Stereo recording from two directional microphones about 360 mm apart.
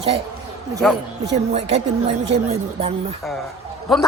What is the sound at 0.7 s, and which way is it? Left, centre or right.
Speech, centre.